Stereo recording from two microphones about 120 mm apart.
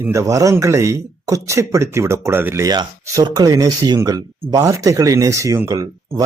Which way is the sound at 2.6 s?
35° right (ahead or behind).